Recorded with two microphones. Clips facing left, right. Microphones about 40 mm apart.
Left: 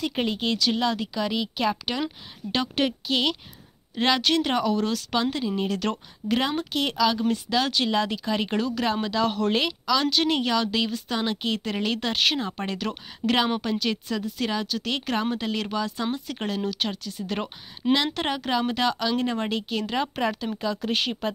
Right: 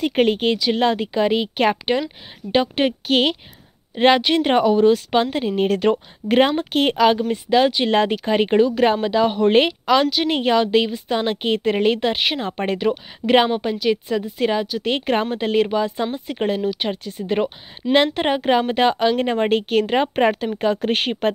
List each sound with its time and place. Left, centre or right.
0.0 s a woman's voice: right
2.5 s a woman's voice: right
3.1 s a woman's voice: right
6.2 s a woman's voice: right
7.2 s a woman's voice: right
7.9 s a woman's voice: right
9.5 s a woman's voice: right; by 12.4 s centre
12.4 s a woman's voice: right; by 16.9 s centre
16.9 s a woman's voice: right